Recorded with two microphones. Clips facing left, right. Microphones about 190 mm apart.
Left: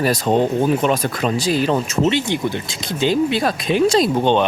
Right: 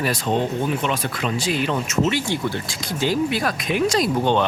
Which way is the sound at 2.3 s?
20° left (ahead or behind).